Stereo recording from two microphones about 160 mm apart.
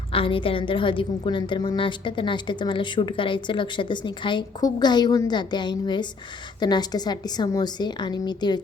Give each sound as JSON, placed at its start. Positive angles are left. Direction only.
{"t": 0.1, "sound": "a woman's voice", "side_deg": 35}